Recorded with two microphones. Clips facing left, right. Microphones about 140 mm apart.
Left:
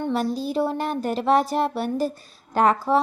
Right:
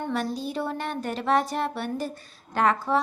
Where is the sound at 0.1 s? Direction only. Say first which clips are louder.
Left 5 dB; 35° left (ahead or behind).